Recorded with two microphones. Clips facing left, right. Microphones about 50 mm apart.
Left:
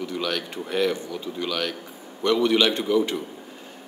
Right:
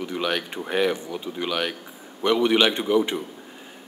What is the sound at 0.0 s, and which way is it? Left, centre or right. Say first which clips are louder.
Speech: right 2 dB; right.